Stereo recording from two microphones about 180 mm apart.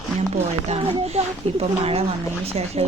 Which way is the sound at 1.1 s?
35° right (ahead or behind).